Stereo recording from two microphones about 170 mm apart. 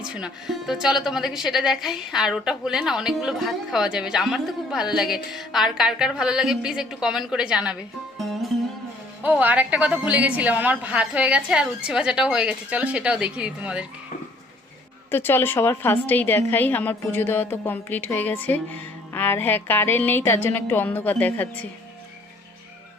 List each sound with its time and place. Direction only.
0.0 s a woman's voice: 5° right (ahead or behind)
9.2 s a woman's voice: 10° right (ahead or behind)
15.1 s a woman's voice: 15° left (ahead or behind)